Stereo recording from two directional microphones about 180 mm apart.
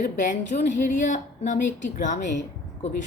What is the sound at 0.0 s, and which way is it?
Speech, 45° left (ahead or behind).